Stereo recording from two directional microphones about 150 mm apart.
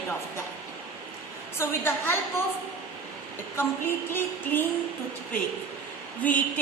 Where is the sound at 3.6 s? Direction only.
15° left (ahead or behind).